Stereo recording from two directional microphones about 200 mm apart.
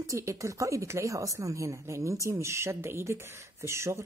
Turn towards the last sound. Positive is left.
turn(degrees=-15)  # may be behind; listen again after turning